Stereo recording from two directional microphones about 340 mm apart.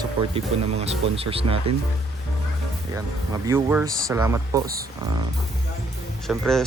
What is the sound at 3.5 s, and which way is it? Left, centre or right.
Speech, centre.